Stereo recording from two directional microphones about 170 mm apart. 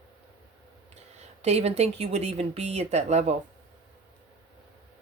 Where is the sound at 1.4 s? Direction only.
40° right (ahead or behind).